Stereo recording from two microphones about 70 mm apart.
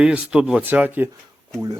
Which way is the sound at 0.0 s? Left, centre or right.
Centre.